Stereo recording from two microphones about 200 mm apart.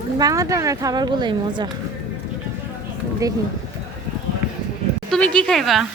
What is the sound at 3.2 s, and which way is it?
Speech, 15° right (ahead or behind).